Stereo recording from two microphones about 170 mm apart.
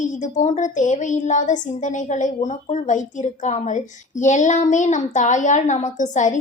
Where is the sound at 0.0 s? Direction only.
45° left (ahead or behind).